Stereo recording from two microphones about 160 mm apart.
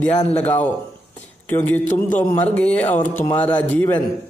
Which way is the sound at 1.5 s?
10° left (ahead or behind).